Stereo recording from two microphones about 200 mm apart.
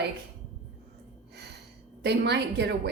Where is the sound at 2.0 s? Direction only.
55° right (ahead or behind).